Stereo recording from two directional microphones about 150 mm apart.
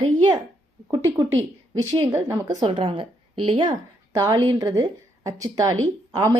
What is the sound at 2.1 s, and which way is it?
Speech, 20° right (ahead or behind).